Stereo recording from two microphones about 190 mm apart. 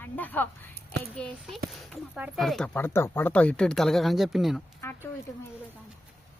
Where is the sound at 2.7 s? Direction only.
10° left (ahead or behind).